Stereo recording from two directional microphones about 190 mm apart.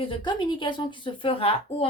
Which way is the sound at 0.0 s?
25° left (ahead or behind).